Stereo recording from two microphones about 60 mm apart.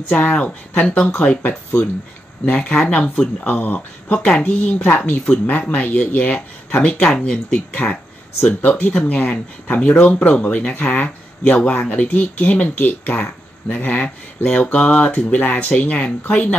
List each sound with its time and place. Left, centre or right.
0.1 s speech: left
5.2 s speech: left
7.1 s speech: centre
7.5 s speech: left